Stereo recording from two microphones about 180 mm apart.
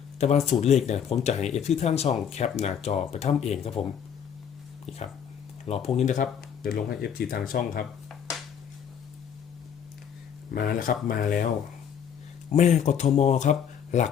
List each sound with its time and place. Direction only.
0.2 s speech: 40° left (ahead or behind)
4.9 s speech: centre (ahead or behind)
5.6 s speech: 35° left (ahead or behind); by 7.9 s 50° left (ahead or behind)
10.5 s speech: 55° left (ahead or behind)
12.5 s speech: 40° left (ahead or behind)